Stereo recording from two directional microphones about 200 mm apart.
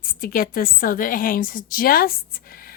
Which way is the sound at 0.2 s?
45° left (ahead or behind).